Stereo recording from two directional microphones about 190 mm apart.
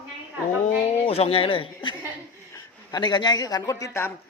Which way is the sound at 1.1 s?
30° left (ahead or behind).